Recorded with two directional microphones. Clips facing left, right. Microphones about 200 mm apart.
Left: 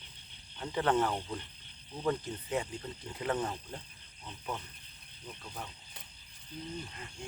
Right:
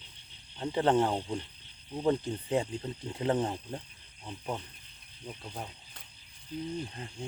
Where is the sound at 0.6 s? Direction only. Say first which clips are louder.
Right 4 dB; 30° right (ahead or behind).